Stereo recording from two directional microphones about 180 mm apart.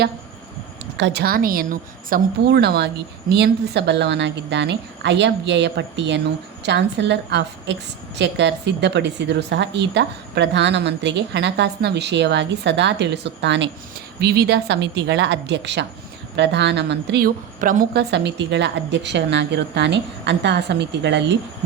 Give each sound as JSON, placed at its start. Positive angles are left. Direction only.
{"t": 0.9, "sound": "a woman's voice", "side_deg": -75}
{"t": 14.2, "sound": "a woman's voice", "side_deg": -60}
{"t": 18.1, "sound": "a woman's voice", "side_deg": -70}